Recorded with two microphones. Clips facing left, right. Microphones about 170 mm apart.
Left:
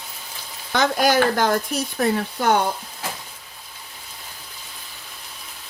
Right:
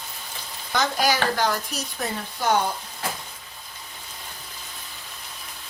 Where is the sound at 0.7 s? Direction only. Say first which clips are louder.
Left 5 dB; 55° left (ahead or behind).